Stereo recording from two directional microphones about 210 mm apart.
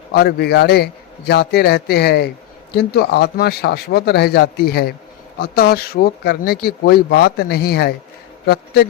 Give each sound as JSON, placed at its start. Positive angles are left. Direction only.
{"t": 0.1, "sound": "speech", "side_deg": 50}